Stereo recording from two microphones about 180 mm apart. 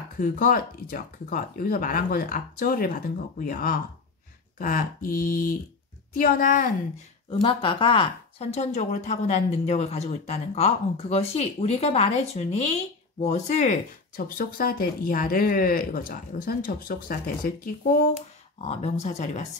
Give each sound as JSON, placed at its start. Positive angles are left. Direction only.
{"t": 0.2, "sound": "speech", "side_deg": 50}
{"t": 7.4, "sound": "a woman's voice", "side_deg": 30}
{"t": 18.6, "sound": "a woman's voice", "side_deg": 35}